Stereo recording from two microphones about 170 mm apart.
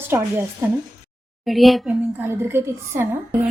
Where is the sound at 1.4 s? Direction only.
Centre (ahead or behind).